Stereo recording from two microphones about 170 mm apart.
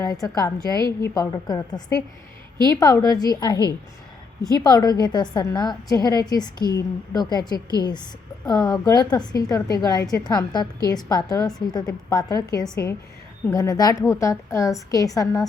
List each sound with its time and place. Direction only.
0.0 s a woman's voice: 20° left (ahead or behind)